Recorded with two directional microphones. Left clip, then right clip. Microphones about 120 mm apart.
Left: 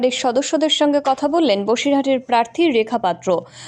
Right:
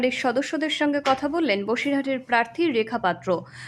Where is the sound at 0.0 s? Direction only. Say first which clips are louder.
Left 5 dB; 35° left (ahead or behind).